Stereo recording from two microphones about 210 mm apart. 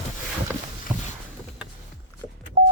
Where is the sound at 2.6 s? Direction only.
45° right (ahead or behind).